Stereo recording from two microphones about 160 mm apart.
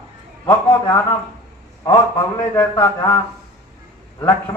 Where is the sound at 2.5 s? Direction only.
15° left (ahead or behind).